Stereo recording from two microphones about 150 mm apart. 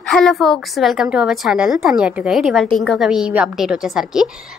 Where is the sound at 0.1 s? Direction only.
Centre (ahead or behind).